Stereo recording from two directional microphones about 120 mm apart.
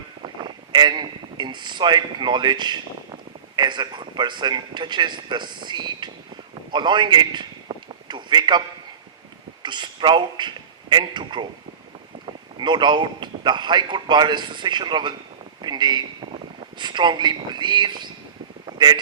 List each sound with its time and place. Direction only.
0.2 s a man's voice: 40° right (ahead or behind)
7.7 s a sound: 40° right (ahead or behind)
8.0 s a man's voice: 40° right (ahead or behind)
9.6 s a man's voice: 40° right (ahead or behind)
15.6 s a sound: 40° right (ahead or behind)
16.6 s speech: 40° right (ahead or behind)